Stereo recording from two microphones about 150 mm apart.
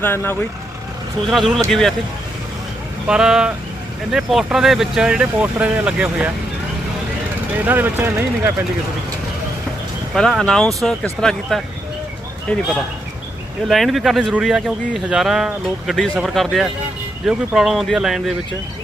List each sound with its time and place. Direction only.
0.0 s speech: 15° left (ahead or behind)
1.3 s speech: centre (ahead or behind)
3.1 s speech: 5° right (ahead or behind)
7.6 s speech: 10° right (ahead or behind)
10.2 s speech: 5° left (ahead or behind)
13.7 s speech: centre (ahead or behind)